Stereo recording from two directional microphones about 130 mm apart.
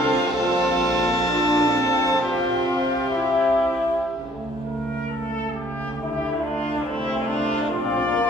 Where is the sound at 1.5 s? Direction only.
25° left (ahead or behind).